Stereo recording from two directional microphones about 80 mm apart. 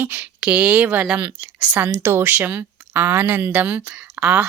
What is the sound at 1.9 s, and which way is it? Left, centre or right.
Speech, right.